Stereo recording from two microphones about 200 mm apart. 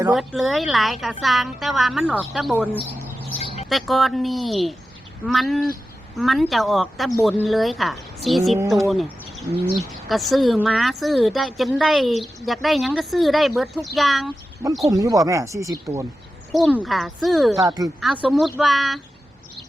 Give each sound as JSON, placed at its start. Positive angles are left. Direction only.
{"t": 0.1, "sound": "speech", "side_deg": 0}
{"t": 3.7, "sound": "speech", "side_deg": 0}
{"t": 8.9, "sound": "bird", "side_deg": 0}
{"t": 9.9, "sound": "speech", "side_deg": 0}
{"t": 14.8, "sound": "speech", "side_deg": -15}
{"t": 16.5, "sound": "speech", "side_deg": 0}
{"t": 17.6, "sound": "speech", "side_deg": -15}
{"t": 18.0, "sound": "speech", "side_deg": -5}